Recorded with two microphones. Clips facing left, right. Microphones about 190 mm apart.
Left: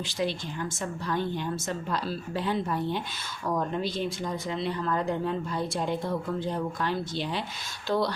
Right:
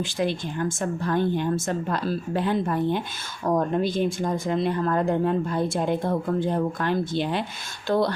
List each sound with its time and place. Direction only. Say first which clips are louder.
0.0 s speech: right 4 dB; 50° right (ahead or behind)